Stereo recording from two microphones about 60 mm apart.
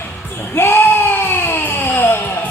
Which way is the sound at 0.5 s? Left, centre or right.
Left.